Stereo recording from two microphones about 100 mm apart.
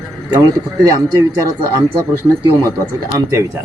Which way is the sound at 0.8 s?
35° right (ahead or behind).